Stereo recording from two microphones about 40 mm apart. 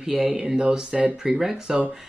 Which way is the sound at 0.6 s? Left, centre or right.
Right.